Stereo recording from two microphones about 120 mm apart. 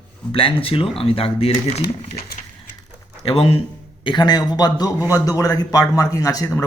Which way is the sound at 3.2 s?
50° left (ahead or behind).